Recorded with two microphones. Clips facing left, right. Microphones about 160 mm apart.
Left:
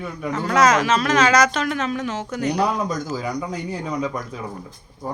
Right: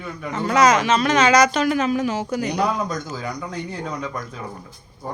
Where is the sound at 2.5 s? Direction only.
5° left (ahead or behind).